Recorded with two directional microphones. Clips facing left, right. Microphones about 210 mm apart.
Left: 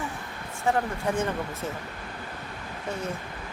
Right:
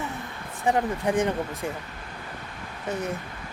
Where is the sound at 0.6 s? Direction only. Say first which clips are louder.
Right 2 dB; 15° right (ahead or behind).